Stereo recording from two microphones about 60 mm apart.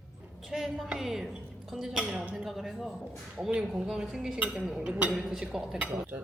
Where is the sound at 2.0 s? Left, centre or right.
Right.